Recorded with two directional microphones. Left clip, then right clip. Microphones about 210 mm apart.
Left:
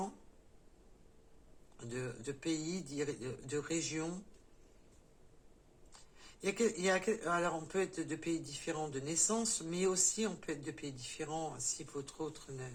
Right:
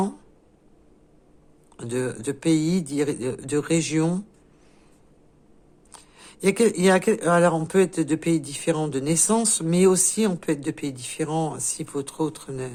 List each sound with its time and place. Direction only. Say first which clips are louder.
1.7 s speech: right 16 dB; 50° right (ahead or behind)
5.9 s speech: right 12 dB; 50° right (ahead or behind)